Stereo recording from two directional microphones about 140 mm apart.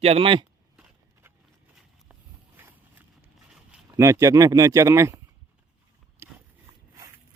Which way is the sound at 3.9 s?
20° right (ahead or behind).